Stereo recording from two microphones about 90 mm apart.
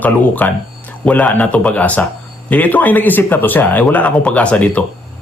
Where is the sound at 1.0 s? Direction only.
15° left (ahead or behind).